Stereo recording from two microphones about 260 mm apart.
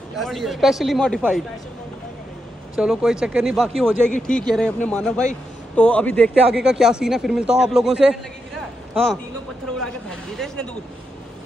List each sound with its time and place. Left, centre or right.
0.2 s a man's voice: centre
2.7 s a man's voice: centre